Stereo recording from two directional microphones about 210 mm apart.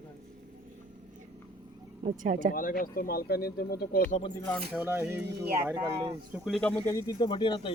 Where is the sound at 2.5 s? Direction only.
40° left (ahead or behind).